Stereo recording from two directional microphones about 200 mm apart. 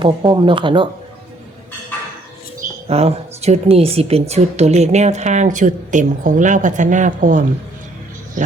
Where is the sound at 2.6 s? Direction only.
30° right (ahead or behind).